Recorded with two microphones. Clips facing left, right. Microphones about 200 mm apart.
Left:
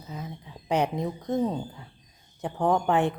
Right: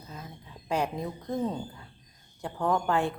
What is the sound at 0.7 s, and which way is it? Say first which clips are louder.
Speech: left 4 dB; 20° left (ahead or behind).